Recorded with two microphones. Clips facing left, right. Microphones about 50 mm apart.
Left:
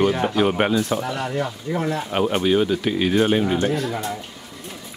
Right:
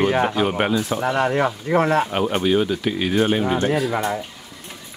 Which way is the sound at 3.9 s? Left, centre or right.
Right.